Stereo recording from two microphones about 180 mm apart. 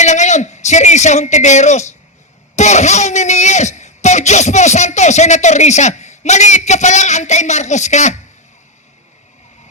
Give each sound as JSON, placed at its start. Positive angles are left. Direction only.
{"t": 0.0, "sound": "a man's voice", "side_deg": 40}